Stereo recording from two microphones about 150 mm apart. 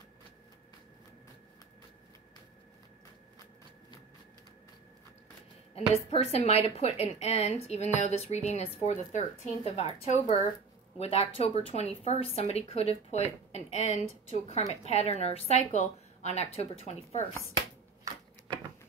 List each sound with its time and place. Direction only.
5.8 s a woman's voice: 45° left (ahead or behind)